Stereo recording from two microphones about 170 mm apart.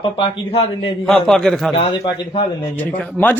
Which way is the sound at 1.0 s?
5° left (ahead or behind).